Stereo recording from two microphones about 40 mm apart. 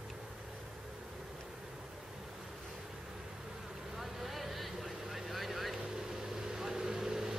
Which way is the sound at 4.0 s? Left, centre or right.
Centre.